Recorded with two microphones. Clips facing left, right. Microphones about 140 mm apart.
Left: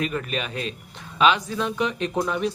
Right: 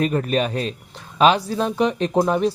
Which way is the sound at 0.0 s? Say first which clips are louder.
Right 7 dB; 40° right (ahead or behind).